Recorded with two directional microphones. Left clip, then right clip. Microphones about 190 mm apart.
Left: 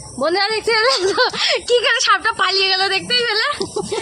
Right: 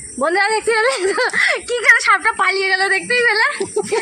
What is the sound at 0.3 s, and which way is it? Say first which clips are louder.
Speech: right 2 dB; 45° left (ahead or behind).